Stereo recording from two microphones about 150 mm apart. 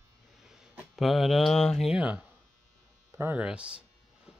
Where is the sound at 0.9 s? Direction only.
Centre (ahead or behind).